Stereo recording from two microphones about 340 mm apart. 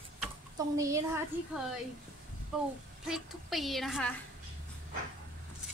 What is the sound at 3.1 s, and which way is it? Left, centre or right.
A woman's voice, centre.